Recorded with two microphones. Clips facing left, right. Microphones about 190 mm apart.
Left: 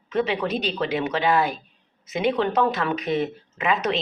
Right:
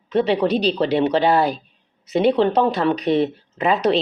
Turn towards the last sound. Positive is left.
turn(degrees=-35)  # may be behind; listen again after turning